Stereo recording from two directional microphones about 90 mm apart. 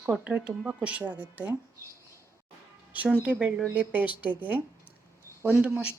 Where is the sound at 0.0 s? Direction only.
15° right (ahead or behind).